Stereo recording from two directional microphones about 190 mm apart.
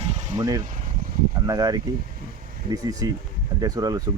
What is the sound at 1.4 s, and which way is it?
Speech, 20° right (ahead or behind).